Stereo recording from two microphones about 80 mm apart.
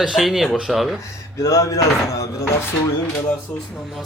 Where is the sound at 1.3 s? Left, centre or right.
Left.